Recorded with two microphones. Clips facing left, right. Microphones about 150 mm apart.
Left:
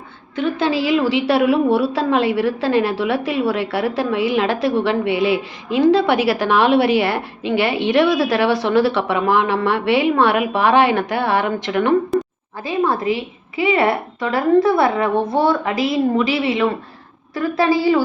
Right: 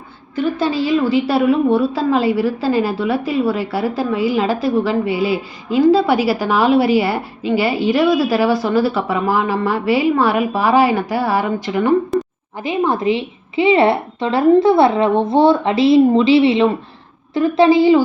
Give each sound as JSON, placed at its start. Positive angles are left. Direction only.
{"t": 0.6, "sound": "a woman's voice", "side_deg": 0}
{"t": 12.5, "sound": "a woman's voice", "side_deg": -20}